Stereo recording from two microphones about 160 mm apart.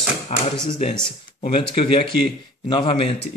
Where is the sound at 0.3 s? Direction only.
45° left (ahead or behind).